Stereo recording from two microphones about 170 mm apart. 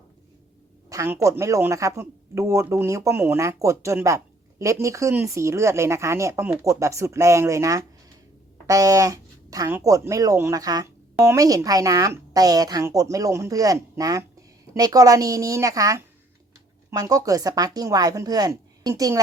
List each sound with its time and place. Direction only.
0.9 s speech: 15° right (ahead or behind)